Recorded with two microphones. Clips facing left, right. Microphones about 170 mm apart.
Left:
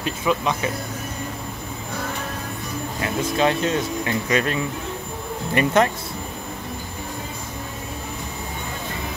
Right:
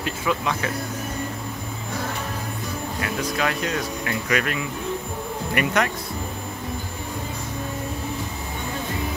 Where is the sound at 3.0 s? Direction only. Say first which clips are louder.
Left 5 dB; 25° left (ahead or behind).